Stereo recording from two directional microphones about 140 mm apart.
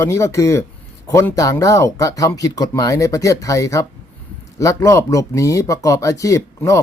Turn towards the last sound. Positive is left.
turn(degrees=20)  # may be behind; listen again after turning